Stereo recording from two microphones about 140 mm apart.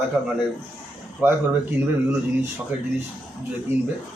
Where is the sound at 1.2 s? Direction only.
10° right (ahead or behind).